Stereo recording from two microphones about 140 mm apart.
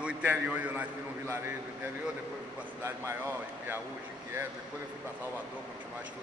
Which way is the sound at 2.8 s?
20° right (ahead or behind).